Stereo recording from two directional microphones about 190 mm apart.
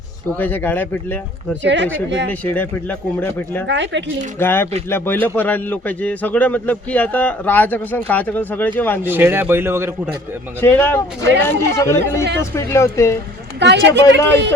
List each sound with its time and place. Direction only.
0.3 s a man's voice: 10° left (ahead or behind)
1.6 s speech: 70° right (ahead or behind)
2.3 s a man's voice: 10° left (ahead or behind)
3.7 s speech: 70° right (ahead or behind)
4.4 s a man's voice: 10° left (ahead or behind)
9.0 s speech: 10° right (ahead or behind)
10.6 s a man's voice: 10° left (ahead or behind)
13.6 s a man's voice: 65° right (ahead or behind)